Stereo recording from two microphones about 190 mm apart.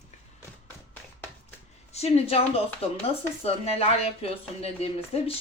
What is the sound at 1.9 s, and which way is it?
A woman's voice, 35° left (ahead or behind).